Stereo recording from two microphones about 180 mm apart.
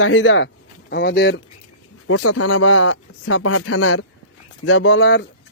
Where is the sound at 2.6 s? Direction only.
90° left.